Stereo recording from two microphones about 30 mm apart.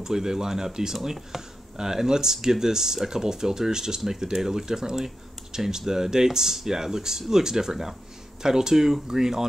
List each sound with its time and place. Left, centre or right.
0.0 s speech: centre